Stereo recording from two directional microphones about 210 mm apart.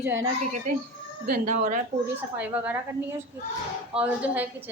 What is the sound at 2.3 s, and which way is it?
Speech, 10° right (ahead or behind).